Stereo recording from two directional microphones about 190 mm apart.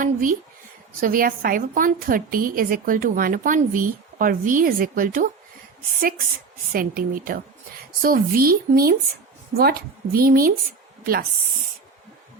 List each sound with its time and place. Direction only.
0.0 s a woman's voice: 45° right (ahead or behind)